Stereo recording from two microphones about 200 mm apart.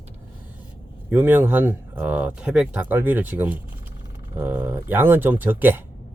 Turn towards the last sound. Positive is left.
turn(degrees=-10)  # may be behind; listen again after turning